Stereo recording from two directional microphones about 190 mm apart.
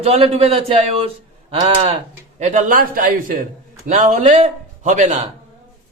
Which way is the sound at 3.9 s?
35° right (ahead or behind).